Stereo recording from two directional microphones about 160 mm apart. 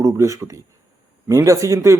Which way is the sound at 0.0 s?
20° right (ahead or behind).